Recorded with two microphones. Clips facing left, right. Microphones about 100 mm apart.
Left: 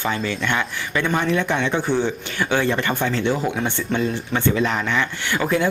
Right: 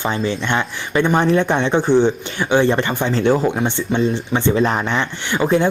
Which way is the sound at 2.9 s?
15° right (ahead or behind).